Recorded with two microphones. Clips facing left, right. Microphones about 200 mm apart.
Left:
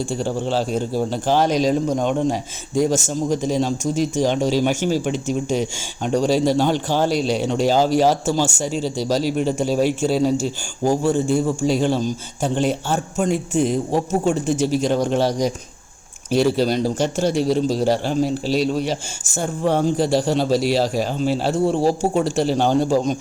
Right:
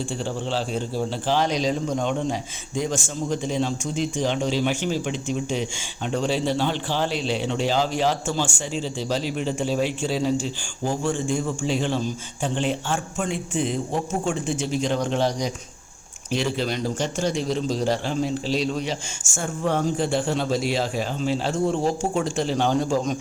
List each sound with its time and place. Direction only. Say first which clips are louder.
0.1 s a man's voice: left 5 dB; 45° left (ahead or behind)
17.2 s a man's voice: left 7 dB; 5° left (ahead or behind)
19.2 s a man's voice: left 5 dB; 35° left (ahead or behind)